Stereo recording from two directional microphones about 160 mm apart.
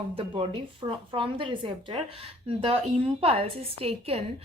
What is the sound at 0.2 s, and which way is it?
A woman's voice, 35° right (ahead or behind).